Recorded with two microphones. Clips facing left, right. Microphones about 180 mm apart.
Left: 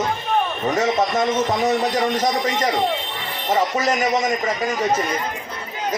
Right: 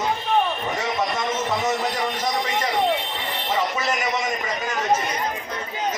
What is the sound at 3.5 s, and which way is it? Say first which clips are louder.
Speech: left 5 dB; 45° left (ahead or behind).